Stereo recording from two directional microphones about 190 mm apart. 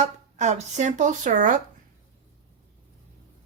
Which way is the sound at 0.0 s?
35° right (ahead or behind).